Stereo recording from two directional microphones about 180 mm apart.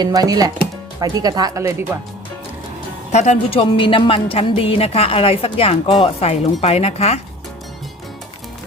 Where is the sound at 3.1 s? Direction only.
40° left (ahead or behind).